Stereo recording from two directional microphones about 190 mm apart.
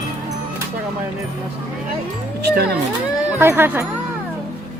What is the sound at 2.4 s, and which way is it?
Speech, 55° right (ahead or behind).